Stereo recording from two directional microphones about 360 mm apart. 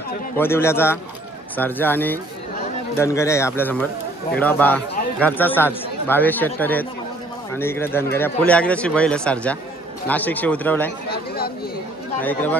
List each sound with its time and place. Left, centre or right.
0.4 s speech: centre
11.1 s chatter: left
12.2 s speech: centre